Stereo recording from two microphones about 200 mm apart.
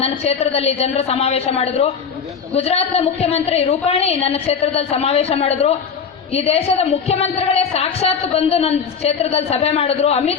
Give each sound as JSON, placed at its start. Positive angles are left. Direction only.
{"t": 0.0, "sound": "a woman's voice", "side_deg": 30}